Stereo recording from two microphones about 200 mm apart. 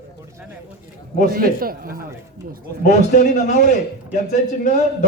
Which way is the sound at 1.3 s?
45° right (ahead or behind).